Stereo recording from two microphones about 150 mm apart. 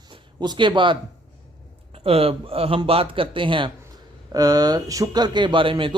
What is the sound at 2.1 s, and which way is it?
Speech, 40° right (ahead or behind).